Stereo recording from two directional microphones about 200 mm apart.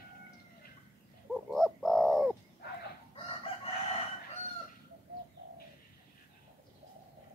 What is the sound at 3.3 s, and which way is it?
Chicken, 30° left (ahead or behind).